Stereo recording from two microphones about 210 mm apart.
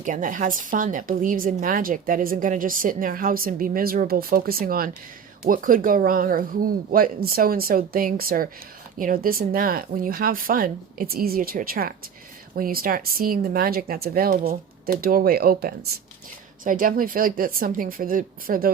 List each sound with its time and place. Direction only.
0.0 s a woman's voice: 40° right (ahead or behind)